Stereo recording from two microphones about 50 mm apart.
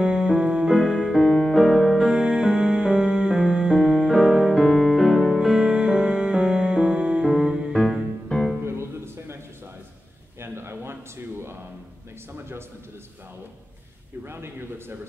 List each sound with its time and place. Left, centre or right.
0.0 s music: centre
0.7 s music: centre
1.1 s music: centre
2.0 s music: centre
4.5 s music: centre
8.3 s music: centre
8.6 s music: right
10.4 s a sound: right
14.2 s a sound: right